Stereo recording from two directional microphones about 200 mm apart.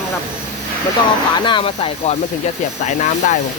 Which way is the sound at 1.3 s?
25° left (ahead or behind).